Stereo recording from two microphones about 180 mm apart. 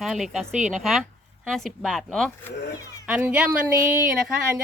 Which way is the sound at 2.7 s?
20° left (ahead or behind).